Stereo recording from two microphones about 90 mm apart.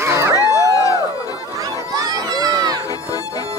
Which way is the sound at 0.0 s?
30° right (ahead or behind).